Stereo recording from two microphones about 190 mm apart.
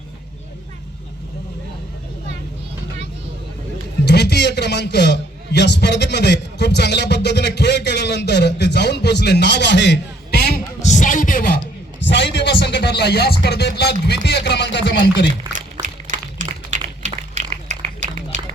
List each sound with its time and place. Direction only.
4.0 s a man's voice: 60° left (ahead or behind)
10.8 s music: 40° left (ahead or behind)
12.0 s a man's voice: 65° left (ahead or behind)
15.5 s a sound: 40° right (ahead or behind)